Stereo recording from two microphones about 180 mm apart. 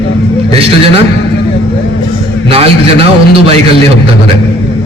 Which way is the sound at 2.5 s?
30° right (ahead or behind).